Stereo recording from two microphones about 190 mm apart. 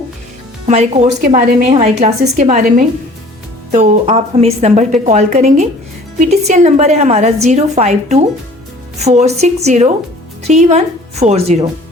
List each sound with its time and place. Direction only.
0.6 s a woman's voice: 35° right (ahead or behind)